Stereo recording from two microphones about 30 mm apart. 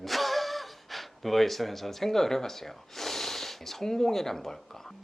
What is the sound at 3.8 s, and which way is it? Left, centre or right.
Speech, centre.